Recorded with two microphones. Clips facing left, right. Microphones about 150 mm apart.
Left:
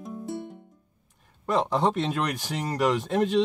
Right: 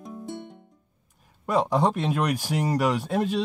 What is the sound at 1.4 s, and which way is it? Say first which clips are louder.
Speech: right 1 dB; 10° right (ahead or behind).